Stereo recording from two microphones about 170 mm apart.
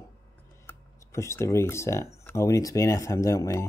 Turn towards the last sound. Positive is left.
turn(degrees=20)  # may be behind; listen again after turning